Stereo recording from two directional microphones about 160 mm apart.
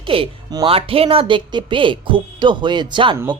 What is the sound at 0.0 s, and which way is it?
Speech, 35° right (ahead or behind).